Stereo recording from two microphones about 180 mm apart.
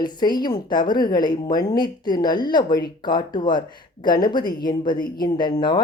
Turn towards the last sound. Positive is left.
turn(degrees=25)  # may be behind; listen again after turning